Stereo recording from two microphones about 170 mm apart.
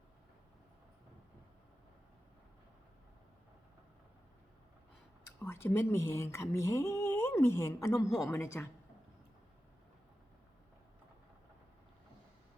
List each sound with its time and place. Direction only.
5.4 s speech: 15° left (ahead or behind)